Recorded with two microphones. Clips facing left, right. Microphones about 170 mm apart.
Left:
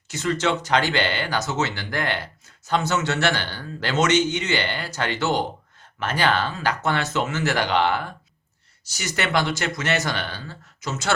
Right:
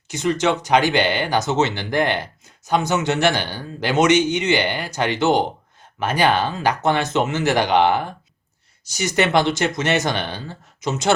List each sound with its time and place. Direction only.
0.1 s a man's voice: 15° right (ahead or behind)